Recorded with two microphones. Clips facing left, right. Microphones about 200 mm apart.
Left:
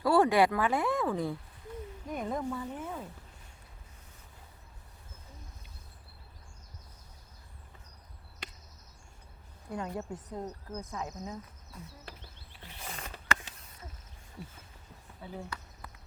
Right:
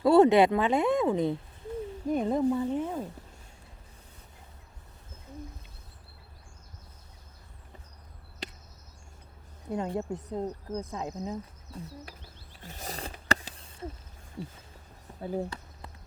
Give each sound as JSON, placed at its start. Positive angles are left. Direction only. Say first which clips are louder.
{"t": 0.0, "sound": "speech", "louder": "right 5 dB", "side_deg": -25}
{"t": 9.6, "sound": "speech", "louder": "right 6 dB", "side_deg": -25}
{"t": 12.6, "sound": "zipper", "louder": "right 5 dB", "side_deg": -40}
{"t": 15.2, "sound": "speech", "louder": "right 10 dB", "side_deg": -45}